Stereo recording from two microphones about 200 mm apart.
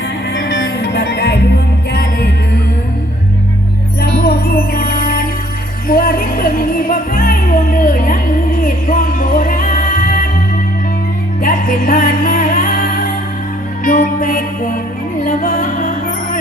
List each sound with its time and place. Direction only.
0.3 s music: 65° left (ahead or behind)
4.0 s music: 50° left (ahead or behind)
11.4 s music: 45° left (ahead or behind)